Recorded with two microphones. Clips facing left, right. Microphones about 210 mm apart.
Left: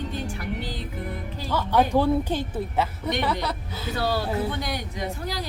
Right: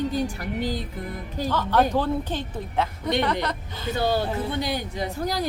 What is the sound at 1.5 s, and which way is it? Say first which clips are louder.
A woman's voice: even; 10° left (ahead or behind).